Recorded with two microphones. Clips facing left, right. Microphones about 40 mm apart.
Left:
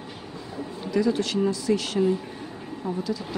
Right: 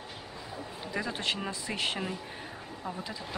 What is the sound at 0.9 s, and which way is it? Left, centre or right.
A woman's voice, right.